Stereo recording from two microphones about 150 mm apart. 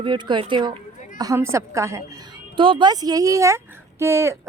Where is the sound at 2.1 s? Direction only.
35° right (ahead or behind).